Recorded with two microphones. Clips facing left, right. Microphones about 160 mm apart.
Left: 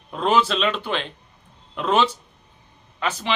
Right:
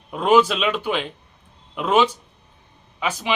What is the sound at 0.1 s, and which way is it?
Speech, 10° right (ahead or behind).